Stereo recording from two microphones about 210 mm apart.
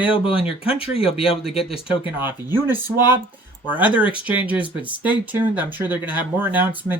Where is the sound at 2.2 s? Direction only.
10° right (ahead or behind).